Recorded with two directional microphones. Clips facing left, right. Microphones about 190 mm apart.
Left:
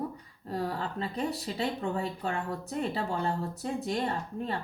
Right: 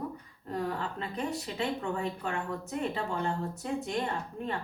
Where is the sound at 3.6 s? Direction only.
35° left (ahead or behind).